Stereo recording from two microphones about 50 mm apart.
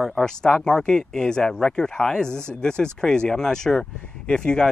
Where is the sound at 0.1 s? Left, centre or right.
Centre.